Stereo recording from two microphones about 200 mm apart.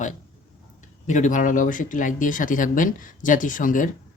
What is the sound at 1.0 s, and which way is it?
Speech, 40° left (ahead or behind).